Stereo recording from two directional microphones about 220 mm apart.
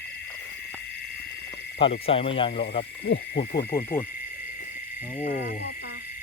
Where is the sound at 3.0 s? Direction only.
45° left (ahead or behind).